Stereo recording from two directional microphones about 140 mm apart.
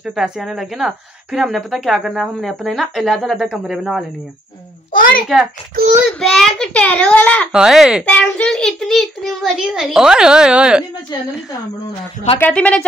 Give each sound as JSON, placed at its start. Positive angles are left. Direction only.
{"t": 0.0, "sound": "a woman's voice", "side_deg": 0}
{"t": 4.9, "sound": "a child's voice", "side_deg": 85}
{"t": 6.0, "sound": "a child's voice", "side_deg": 5}
{"t": 7.5, "sound": "a woman's voice", "side_deg": -5}
{"t": 8.0, "sound": "a woman's voice", "side_deg": 10}
{"t": 12.4, "sound": "a child's voice", "side_deg": 10}